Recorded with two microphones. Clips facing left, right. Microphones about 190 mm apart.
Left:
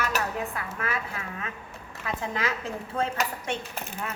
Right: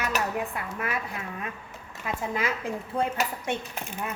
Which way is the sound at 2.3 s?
10° right (ahead or behind).